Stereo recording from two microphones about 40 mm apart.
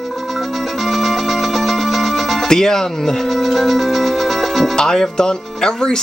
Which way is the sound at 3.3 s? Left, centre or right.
Centre.